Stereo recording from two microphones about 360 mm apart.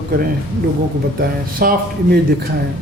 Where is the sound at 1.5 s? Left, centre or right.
Right.